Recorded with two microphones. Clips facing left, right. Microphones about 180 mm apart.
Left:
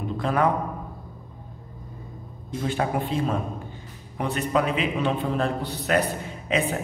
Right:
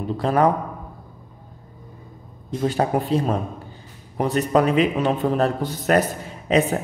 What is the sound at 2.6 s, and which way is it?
A man's voice, 40° right (ahead or behind).